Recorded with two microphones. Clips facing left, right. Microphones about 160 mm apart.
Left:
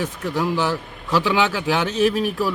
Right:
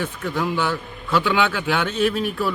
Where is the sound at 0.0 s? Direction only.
40° left (ahead or behind).